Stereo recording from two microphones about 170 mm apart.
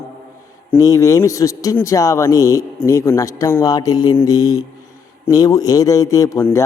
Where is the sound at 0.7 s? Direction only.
20° left (ahead or behind).